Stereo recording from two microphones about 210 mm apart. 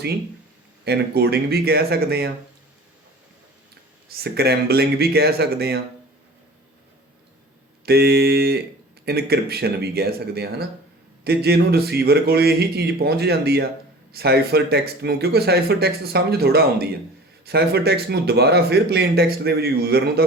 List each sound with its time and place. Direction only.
0.9 s speech: 50° right (ahead or behind)
4.1 s speech: 50° right (ahead or behind)
7.9 s speech: 50° right (ahead or behind)